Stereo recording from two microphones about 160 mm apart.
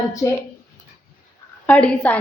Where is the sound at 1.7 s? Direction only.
10° left (ahead or behind).